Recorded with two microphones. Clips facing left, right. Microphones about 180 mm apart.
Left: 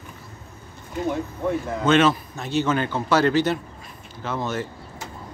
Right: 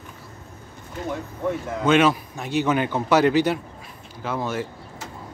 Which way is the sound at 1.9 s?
10° right (ahead or behind).